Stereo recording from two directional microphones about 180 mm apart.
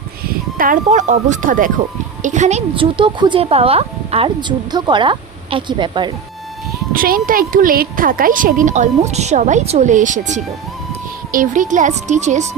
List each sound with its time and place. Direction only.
0.6 s speech: 45° right (ahead or behind); by 6.1 s 25° right (ahead or behind)
6.9 s speech: 50° right (ahead or behind)